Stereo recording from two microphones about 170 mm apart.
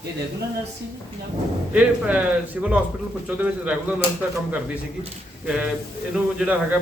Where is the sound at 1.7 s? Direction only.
5° right (ahead or behind).